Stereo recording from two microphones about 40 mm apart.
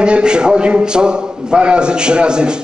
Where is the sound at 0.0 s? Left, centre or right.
Right.